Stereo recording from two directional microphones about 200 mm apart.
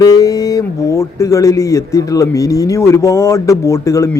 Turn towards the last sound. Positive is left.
turn(degrees=15)  # may be behind; listen again after turning